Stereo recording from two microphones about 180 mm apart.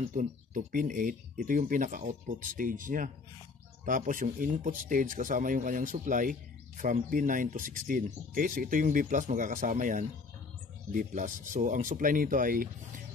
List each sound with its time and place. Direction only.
0.1 s speech: 45° right (ahead or behind)